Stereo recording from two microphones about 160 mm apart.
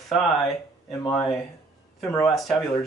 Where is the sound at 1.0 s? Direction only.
5° left (ahead or behind).